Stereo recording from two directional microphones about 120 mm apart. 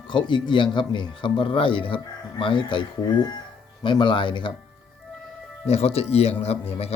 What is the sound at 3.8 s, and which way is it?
Speech, 40° left (ahead or behind).